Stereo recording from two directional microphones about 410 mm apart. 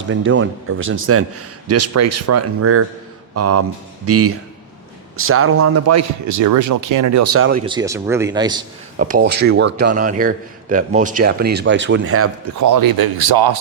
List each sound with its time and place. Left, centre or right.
0.1 s a man's voice: right
7.5 s a man's voice: centre
9.2 s a man's voice: right
9.5 s a man's voice: right
12.6 s speech: right